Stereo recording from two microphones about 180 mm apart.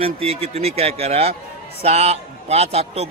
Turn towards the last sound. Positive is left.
turn(degrees=-35)  # may be behind; listen again after turning